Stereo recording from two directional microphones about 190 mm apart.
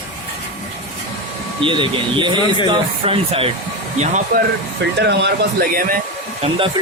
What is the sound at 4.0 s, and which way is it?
Speech, 40° right (ahead or behind).